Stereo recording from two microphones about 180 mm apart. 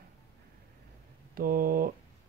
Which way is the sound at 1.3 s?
55° right (ahead or behind).